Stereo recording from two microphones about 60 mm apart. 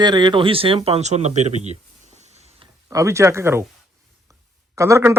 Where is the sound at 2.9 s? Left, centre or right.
Right.